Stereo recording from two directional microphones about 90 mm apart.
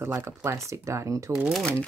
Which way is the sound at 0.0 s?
25° right (ahead or behind).